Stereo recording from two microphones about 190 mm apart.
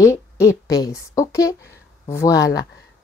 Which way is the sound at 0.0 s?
15° left (ahead or behind).